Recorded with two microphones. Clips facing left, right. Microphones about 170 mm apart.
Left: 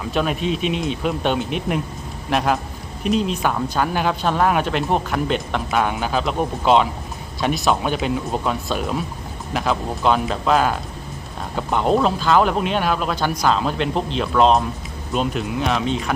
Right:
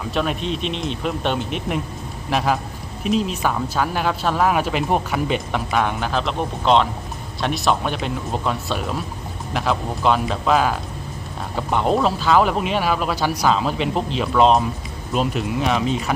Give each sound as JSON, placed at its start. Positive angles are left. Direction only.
{"t": 0.0, "sound": "speech", "side_deg": 0}